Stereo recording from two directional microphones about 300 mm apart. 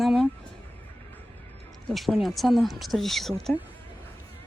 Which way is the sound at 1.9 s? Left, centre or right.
Centre.